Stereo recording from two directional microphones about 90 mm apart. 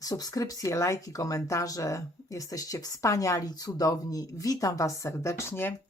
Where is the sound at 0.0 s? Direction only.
45° left (ahead or behind).